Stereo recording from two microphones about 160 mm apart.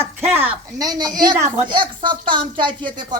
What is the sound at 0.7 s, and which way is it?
Speech, 25° right (ahead or behind).